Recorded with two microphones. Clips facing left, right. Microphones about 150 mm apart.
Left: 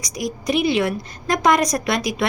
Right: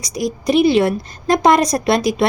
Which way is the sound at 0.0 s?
30° right (ahead or behind).